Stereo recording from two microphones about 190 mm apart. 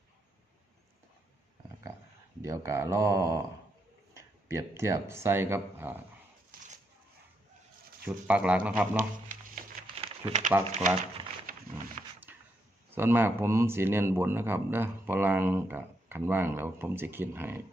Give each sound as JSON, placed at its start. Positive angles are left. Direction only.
{"t": 2.4, "sound": "speech", "side_deg": -15}
{"t": 8.0, "sound": "speech", "side_deg": -5}
{"t": 10.0, "sound": "a sound", "side_deg": -35}
{"t": 10.7, "sound": "speech", "side_deg": -35}
{"t": 12.3, "sound": "a sound", "side_deg": -10}
{"t": 12.9, "sound": "speech", "side_deg": -10}